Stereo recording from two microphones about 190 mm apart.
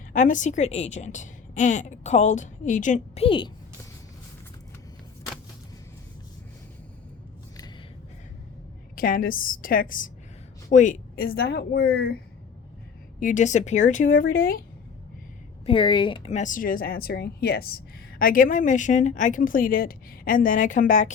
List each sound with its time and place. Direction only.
0.1 s a woman's voice: 40° left (ahead or behind)
3.2 s speech: 25° left (ahead or behind)
9.0 s a woman's voice: 50° left (ahead or behind)
13.1 s a woman's voice: 40° left (ahead or behind)
15.6 s a woman's voice: 25° left (ahead or behind); by 17.7 s 55° left (ahead or behind)
18.2 s a woman's voice: 45° left (ahead or behind)